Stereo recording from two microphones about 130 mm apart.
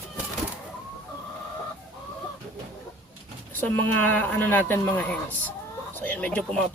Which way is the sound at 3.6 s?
15° left (ahead or behind).